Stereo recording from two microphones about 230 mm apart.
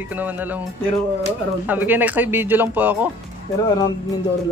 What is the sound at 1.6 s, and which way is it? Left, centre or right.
A woman's voice, centre.